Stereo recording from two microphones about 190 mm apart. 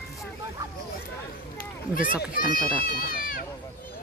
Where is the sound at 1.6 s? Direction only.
45° left (ahead or behind).